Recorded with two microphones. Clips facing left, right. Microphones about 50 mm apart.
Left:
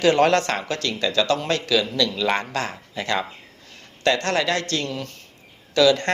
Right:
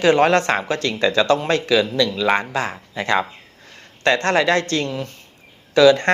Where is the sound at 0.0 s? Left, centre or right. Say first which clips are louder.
Right 2 dB; right.